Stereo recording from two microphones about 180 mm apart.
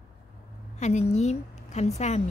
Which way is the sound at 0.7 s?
40° left (ahead or behind).